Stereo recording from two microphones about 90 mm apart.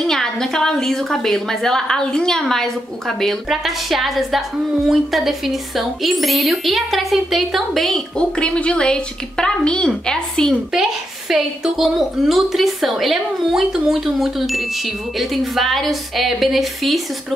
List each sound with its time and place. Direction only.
0.0 s a woman's voice: 5° left (ahead or behind)
10.7 s a woman's voice: 5° right (ahead or behind)